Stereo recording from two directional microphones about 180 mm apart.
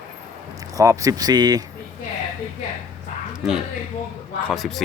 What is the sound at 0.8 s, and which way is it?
Speech, 20° right (ahead or behind).